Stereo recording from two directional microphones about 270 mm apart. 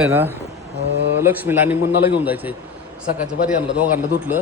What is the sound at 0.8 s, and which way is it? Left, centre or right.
Speech, right.